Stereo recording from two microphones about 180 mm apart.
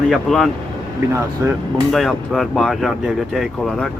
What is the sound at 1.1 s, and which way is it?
Speech, 15° right (ahead or behind).